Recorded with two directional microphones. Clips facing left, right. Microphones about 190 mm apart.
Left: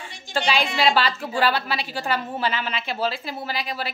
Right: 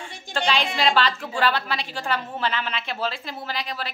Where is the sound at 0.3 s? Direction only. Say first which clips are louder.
Left 2 dB; 55° right (ahead or behind).